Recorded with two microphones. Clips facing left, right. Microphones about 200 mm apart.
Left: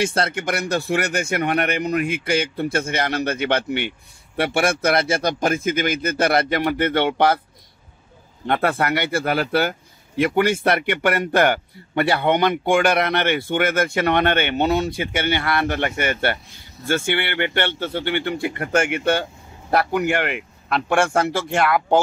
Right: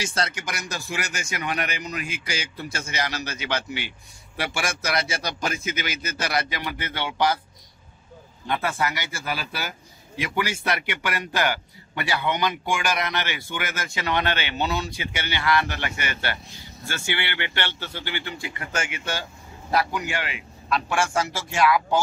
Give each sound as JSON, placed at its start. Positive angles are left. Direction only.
{"t": 0.0, "sound": "a man's voice", "side_deg": 55}
{"t": 8.5, "sound": "a man's voice", "side_deg": 60}